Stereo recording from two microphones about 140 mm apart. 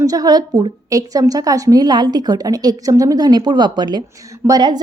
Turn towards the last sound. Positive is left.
turn(degrees=-30)  # may be behind; listen again after turning